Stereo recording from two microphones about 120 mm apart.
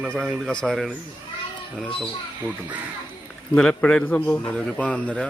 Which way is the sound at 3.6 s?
5° left (ahead or behind).